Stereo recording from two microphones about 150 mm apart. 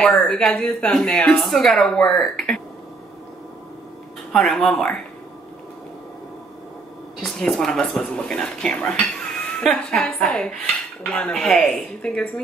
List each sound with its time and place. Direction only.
0.0 s speech: 5° left (ahead or behind)
4.3 s speech: 5° left (ahead or behind)
7.2 s a woman's voice: 5° left (ahead or behind)